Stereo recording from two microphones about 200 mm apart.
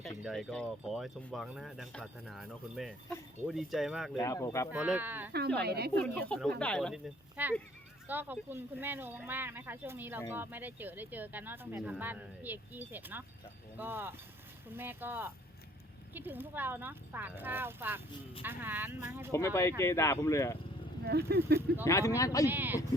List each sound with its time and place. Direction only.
0.2 s speech: centre (ahead or behind)
4.2 s speech: 15° left (ahead or behind)
4.7 s speech: 5° right (ahead or behind)
5.5 s speech: 55° right (ahead or behind)
6.0 s speech: 5° left (ahead or behind); by 19.3 s 10° right (ahead or behind)
19.3 s speech: 15° left (ahead or behind)
21.0 s speech: 50° right (ahead or behind)
21.8 s speech: 15° left (ahead or behind)
22.4 s speech: 10° right (ahead or behind)